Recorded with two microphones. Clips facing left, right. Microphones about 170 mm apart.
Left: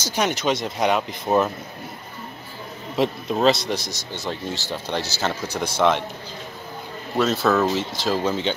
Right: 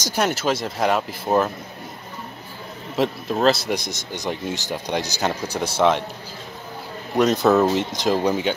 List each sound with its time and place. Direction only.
0.0 s speech: 10° right (ahead or behind)
3.0 s speech: centre (ahead or behind)
3.7 s speech: 15° right (ahead or behind)
7.2 s speech: 15° right (ahead or behind)